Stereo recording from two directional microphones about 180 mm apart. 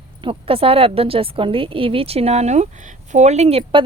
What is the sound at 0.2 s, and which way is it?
A woman's voice, 30° right (ahead or behind).